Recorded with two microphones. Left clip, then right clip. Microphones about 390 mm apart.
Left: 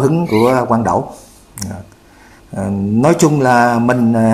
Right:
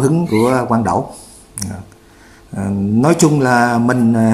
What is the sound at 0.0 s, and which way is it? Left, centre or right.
Speech, centre.